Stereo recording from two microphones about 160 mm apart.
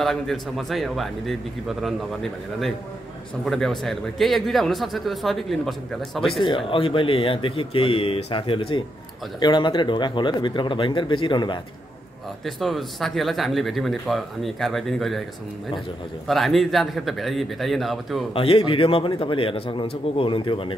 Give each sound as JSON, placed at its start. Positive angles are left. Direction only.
{"t": 0.0, "sound": "speech", "side_deg": 0}
{"t": 3.4, "sound": "speech", "side_deg": 5}
{"t": 6.4, "sound": "speech", "side_deg": 30}
{"t": 12.4, "sound": "speech", "side_deg": 0}
{"t": 16.3, "sound": "speech", "side_deg": 0}
{"t": 18.3, "sound": "speech", "side_deg": 35}